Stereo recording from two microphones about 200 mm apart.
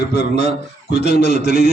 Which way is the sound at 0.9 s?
55° left (ahead or behind).